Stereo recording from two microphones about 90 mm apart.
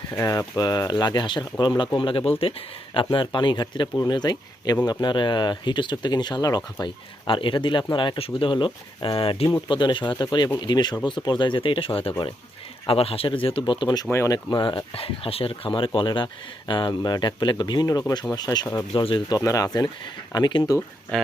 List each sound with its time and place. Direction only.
0.3 s speech: 45° left (ahead or behind)
2.0 s speech: 75° left (ahead or behind)
2.4 s speech: 90° left; by 6.6 s 50° left (ahead or behind)
6.8 s speech: 70° left (ahead or behind); by 9.5 s 85° left
9.6 s speech: 60° left (ahead or behind)
14.3 s speech: 45° left (ahead or behind)
14.9 s speech: 90° left
16.0 s speech: 65° left (ahead or behind); by 18.7 s 50° left (ahead or behind)
18.9 s speech: 65° left (ahead or behind)
19.4 s speech: 40° left (ahead or behind)
20.3 s speech: 55° left (ahead or behind)